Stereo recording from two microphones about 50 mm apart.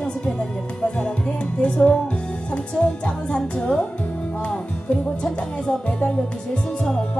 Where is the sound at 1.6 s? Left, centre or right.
Centre.